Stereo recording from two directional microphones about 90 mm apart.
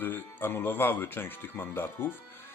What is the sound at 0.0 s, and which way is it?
Speech, 25° left (ahead or behind).